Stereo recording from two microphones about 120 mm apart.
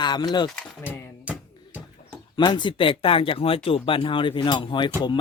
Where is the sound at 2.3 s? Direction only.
40° left (ahead or behind).